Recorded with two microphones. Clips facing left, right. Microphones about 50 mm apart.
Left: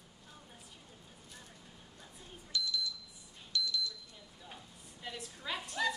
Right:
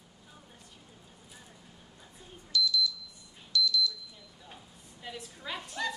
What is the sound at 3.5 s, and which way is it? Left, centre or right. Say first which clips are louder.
Smoke detector: right 8 dB; left.